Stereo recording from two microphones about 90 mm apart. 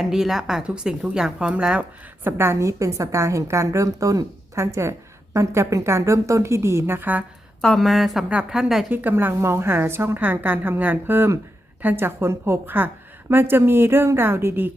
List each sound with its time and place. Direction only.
0.0 s a woman's voice: 5° right (ahead or behind)
2.2 s a woman's voice: 30° right (ahead or behind)
7.6 s speech: 5° left (ahead or behind)
8.3 s a woman's voice: 15° right (ahead or behind)
8.9 s a woman's voice: 20° right (ahead or behind)